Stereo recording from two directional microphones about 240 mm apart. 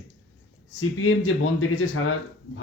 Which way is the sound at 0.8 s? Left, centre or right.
Left.